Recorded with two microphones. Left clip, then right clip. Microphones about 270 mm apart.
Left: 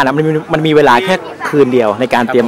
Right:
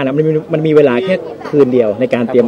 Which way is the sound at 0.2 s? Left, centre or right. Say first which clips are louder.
Even; left.